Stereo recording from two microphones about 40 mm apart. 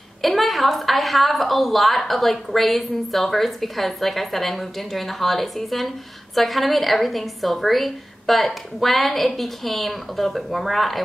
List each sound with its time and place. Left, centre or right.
0.2 s a woman's voice: centre